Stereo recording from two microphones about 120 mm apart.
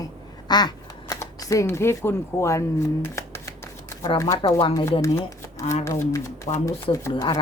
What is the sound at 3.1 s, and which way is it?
Shuffling cards, 25° left (ahead or behind).